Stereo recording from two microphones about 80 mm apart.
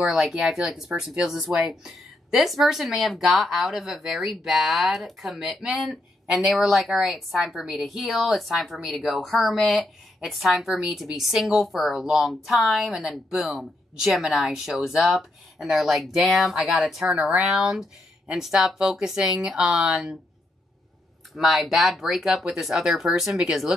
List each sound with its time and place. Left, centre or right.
0.0 s speech: centre
17.1 s speech: centre
17.4 s speech: centre
21.3 s speech: centre